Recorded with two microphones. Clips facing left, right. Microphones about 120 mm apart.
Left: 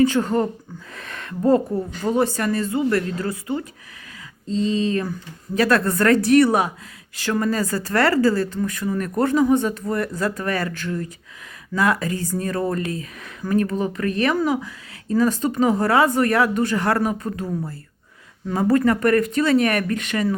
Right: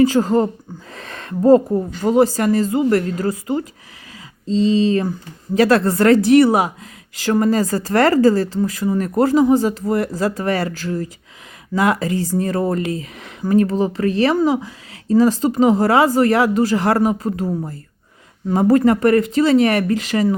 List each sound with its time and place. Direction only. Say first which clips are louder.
0.0 s a woman's voice: right 4 dB; 35° right (ahead or behind)
4.7 s a woman's voice: right 5 dB; 30° right (ahead or behind)
11.7 s speech: right 3 dB; 20° right (ahead or behind)
12.0 s speech: right 5 dB; 40° left (ahead or behind)
12.3 s a woman's voice: right 4 dB; 30° right (ahead or behind)
18.4 s speech: right 4 dB; 30° right (ahead or behind)